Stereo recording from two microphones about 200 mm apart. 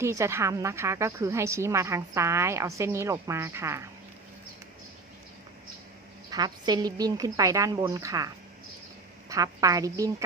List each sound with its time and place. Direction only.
0.0 s a woman's voice: 15° right (ahead or behind)
6.3 s a woman's voice: 20° right (ahead or behind)
9.3 s a woman's voice: 15° right (ahead or behind)